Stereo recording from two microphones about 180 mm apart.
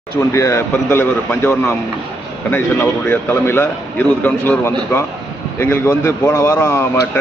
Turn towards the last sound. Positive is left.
turn(degrees=15)  # may be behind; listen again after turning